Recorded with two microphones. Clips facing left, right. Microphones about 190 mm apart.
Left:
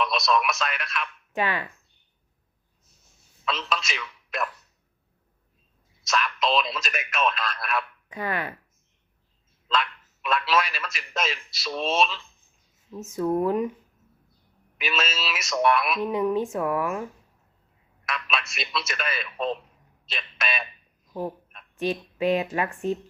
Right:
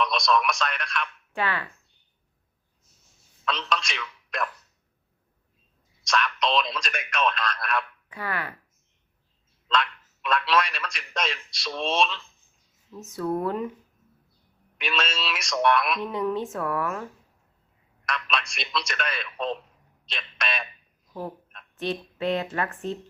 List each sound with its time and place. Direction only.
0.0 s a man's voice: 5° left (ahead or behind)
1.3 s a woman's voice: 15° left (ahead or behind)
3.4 s a man's voice: 5° left (ahead or behind)
6.1 s a man's voice: 5° left (ahead or behind)
8.1 s speech: 20° left (ahead or behind)
9.6 s a man's voice: 5° left (ahead or behind)
13.1 s a woman's voice: 15° left (ahead or behind)
14.8 s a man's voice: 5° left (ahead or behind)
16.0 s a woman's voice: 15° left (ahead or behind)
21.1 s a woman's voice: 15° left (ahead or behind)